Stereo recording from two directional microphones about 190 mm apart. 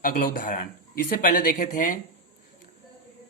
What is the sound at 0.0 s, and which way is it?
Speech, 45° left (ahead or behind).